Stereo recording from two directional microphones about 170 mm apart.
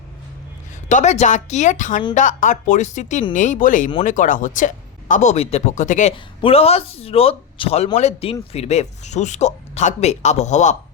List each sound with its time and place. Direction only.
0.9 s speech: 45° left (ahead or behind)
6.4 s speech: 35° left (ahead or behind)